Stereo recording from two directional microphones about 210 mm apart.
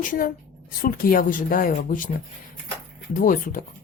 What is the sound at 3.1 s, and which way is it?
Speech, 40° left (ahead or behind).